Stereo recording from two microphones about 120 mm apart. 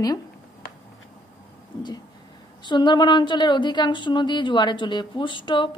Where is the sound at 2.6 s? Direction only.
40° left (ahead or behind).